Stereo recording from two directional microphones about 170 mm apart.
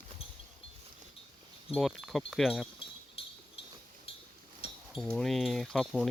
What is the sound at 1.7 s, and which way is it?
Speech, centre (ahead or behind).